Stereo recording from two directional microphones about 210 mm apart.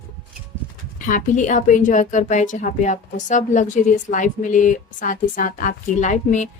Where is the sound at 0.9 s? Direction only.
35° left (ahead or behind).